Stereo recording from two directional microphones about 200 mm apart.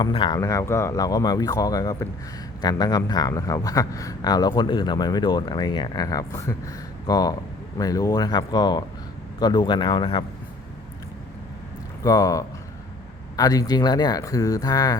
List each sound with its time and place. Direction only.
0.0 s a man's voice: 25° left (ahead or behind)
12.0 s a man's voice: 15° left (ahead or behind)